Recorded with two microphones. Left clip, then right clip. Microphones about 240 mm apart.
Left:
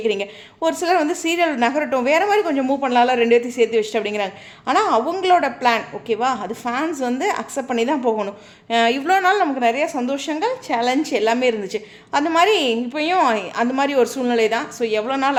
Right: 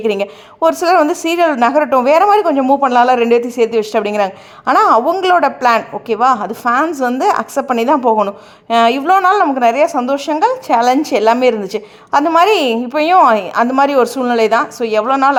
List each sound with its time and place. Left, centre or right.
0.0 s a woman's voice: right